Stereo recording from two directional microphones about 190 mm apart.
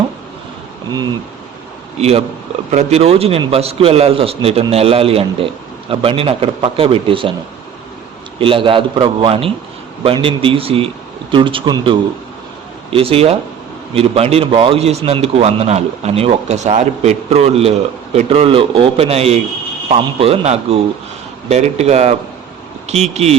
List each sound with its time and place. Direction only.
2.0 s a man's voice: 35° right (ahead or behind)
8.4 s a man's voice: 30° right (ahead or behind)